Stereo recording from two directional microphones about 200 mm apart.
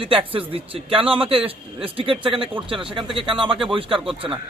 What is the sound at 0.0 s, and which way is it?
A man's voice, 25° right (ahead or behind).